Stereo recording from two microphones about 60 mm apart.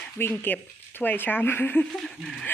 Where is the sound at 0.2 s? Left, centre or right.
Left.